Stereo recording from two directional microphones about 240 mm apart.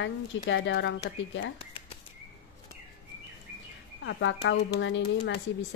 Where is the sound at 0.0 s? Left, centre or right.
Left.